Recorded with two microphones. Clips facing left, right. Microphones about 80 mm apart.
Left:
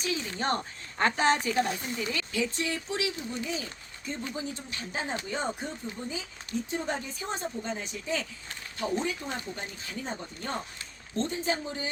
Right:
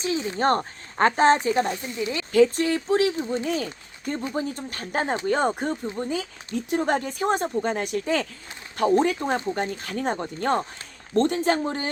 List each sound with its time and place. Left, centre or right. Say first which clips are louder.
0.0 s speech: right 6 dB; right
0.3 s speech: right 8 dB; right
2.3 s speech: right 15 dB; right
3.4 s speech: right 8 dB; right